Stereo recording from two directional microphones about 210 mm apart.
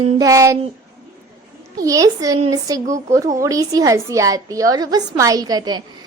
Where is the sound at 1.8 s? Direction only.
15° right (ahead or behind).